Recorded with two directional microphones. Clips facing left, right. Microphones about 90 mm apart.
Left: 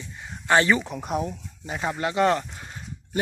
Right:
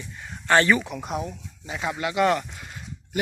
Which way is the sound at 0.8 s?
40° left (ahead or behind).